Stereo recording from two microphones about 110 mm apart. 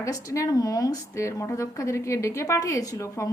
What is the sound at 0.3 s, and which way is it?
A woman's voice, 30° left (ahead or behind).